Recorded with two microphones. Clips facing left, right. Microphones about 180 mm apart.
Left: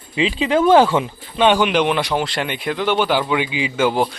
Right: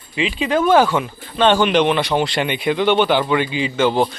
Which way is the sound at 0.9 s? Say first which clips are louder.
Left 1 dB; 15° left (ahead or behind).